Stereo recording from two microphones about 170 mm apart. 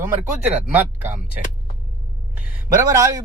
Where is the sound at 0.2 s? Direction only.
10° right (ahead or behind).